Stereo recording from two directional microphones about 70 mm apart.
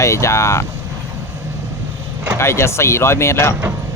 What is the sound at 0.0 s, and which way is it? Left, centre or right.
Speech, left.